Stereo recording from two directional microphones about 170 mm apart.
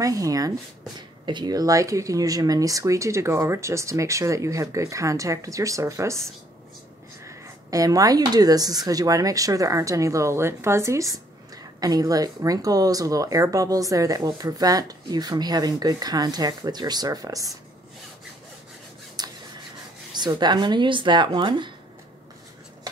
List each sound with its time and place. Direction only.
0.0 s speech: 20° right (ahead or behind)
19.2 s rub: 25° right (ahead or behind)
20.2 s speech: 25° right (ahead or behind)